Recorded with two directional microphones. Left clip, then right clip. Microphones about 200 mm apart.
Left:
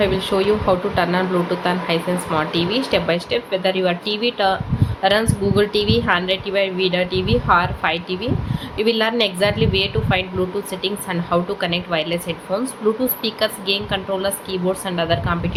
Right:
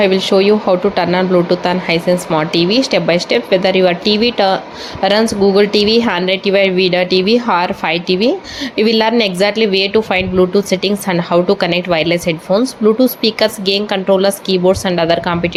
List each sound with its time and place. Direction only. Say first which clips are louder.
0.0 s speech: right 7 dB; 35° right (ahead or behind)